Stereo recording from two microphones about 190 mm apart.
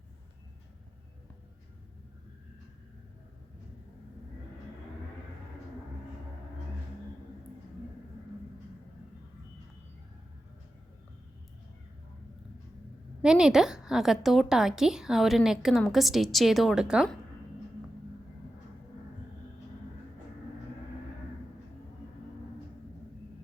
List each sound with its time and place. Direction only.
13.2 s a woman's voice: 5° right (ahead or behind)